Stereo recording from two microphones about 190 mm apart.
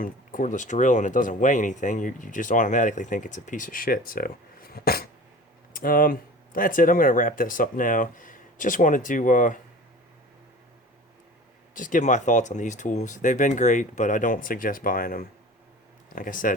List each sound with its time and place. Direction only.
0.0 s speech: 45° left (ahead or behind)
4.7 s dog: 55° left (ahead or behind)
5.7 s speech: 50° left (ahead or behind)
11.7 s speech: 45° left (ahead or behind)